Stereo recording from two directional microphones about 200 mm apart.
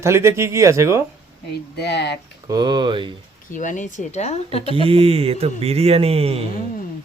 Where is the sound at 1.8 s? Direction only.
55° left (ahead or behind).